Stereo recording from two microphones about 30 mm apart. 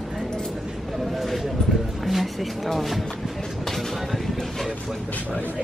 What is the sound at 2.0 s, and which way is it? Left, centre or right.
Music, centre.